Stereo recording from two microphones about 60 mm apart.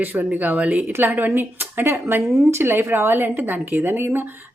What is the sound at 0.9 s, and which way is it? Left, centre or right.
Speech, right.